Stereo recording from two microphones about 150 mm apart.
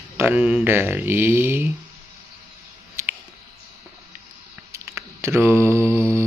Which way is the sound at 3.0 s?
20° right (ahead or behind).